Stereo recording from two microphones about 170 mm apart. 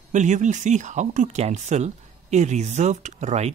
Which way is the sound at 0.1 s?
45° right (ahead or behind).